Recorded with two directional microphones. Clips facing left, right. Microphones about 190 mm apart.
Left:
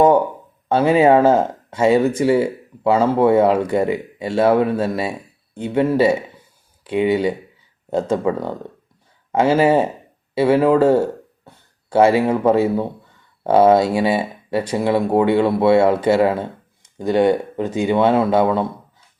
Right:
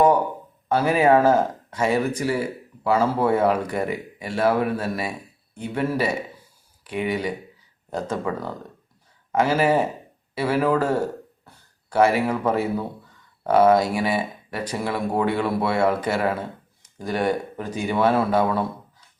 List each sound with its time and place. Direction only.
0.7 s speech: 25° left (ahead or behind)
11.4 s a sound: 25° left (ahead or behind)
13.4 s speech: 25° left (ahead or behind)